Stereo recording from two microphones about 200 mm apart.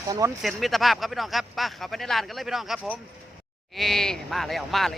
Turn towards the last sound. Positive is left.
turn(degrees=0)  # may be behind; listen again after turning